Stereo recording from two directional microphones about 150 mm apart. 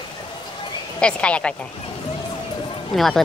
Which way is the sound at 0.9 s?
5° left (ahead or behind).